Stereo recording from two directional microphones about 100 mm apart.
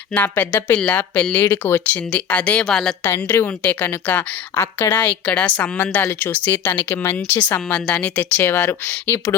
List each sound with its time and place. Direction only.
0.1 s a woman's voice: 15° left (ahead or behind)
3.0 s a woman's voice: 20° left (ahead or behind)